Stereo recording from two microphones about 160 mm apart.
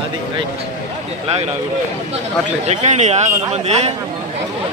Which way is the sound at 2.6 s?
45° right (ahead or behind).